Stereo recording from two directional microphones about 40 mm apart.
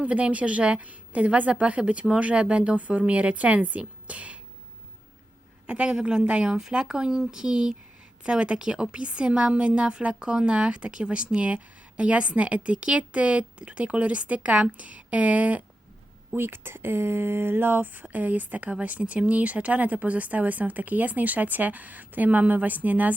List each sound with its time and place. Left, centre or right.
0.0 s a woman's voice: right
5.6 s a woman's voice: right
6.6 s a woman's voice: centre; by 15.6 s right
16.3 s speech: right
17.8 s speech: right